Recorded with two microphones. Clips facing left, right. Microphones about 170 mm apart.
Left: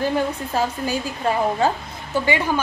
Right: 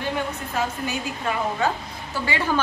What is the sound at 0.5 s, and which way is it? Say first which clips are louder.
A woman's voice: left 4 dB; 30° left (ahead or behind).